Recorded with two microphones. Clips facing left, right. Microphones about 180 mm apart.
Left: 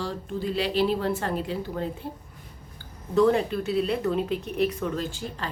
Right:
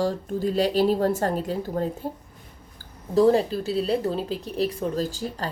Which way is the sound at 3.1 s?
35° right (ahead or behind).